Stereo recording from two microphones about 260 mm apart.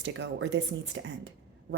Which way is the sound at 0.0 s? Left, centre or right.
Right.